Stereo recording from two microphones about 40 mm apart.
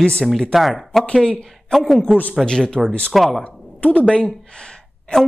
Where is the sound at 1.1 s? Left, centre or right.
Left.